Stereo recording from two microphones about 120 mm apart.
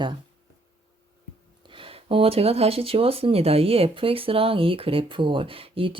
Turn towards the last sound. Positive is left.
turn(degrees=-50)  # may be behind; listen again after turning